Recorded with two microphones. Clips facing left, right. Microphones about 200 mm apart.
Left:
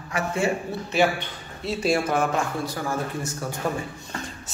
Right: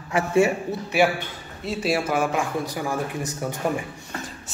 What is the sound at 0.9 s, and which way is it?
Speech, 10° right (ahead or behind).